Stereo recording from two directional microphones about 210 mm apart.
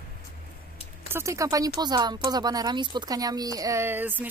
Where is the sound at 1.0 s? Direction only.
10° right (ahead or behind).